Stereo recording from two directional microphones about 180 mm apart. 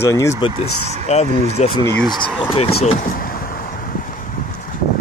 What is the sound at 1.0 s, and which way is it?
Speech, 35° left (ahead or behind).